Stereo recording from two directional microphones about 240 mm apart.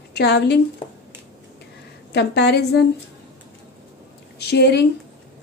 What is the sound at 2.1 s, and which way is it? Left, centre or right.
Speech, left.